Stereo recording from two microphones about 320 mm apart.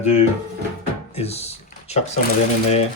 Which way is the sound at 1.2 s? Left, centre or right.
Centre.